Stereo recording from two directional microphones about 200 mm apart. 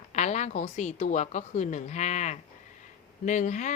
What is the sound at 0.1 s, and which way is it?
Speech, 35° left (ahead or behind).